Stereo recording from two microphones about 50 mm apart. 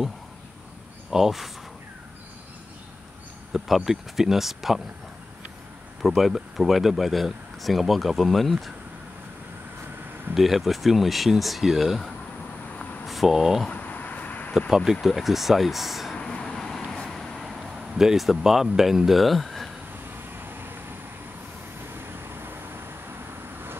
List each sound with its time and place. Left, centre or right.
1.1 s speech: centre
3.5 s speech: centre
6.0 s speech: centre
10.3 s speech: centre
13.7 s a sound: left
14.9 s speech: centre
16.2 s vehicle: centre
17.2 s a sound: centre
20.3 s vehicle: right
21.9 s vehicle: right